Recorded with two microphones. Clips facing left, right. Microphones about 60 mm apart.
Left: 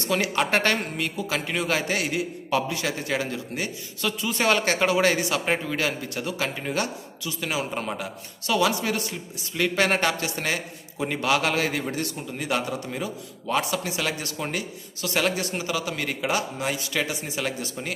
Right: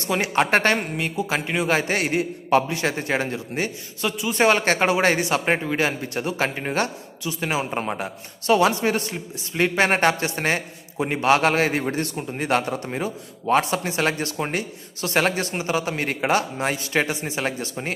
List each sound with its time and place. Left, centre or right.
0.1 s speech: right
0.7 s speech: centre
1.7 s speech: right